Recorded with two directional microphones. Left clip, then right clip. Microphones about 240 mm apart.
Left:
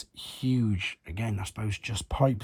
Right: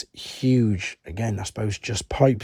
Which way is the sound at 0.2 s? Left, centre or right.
Right.